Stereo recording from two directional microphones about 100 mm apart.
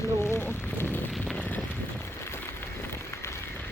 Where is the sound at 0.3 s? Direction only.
20° left (ahead or behind).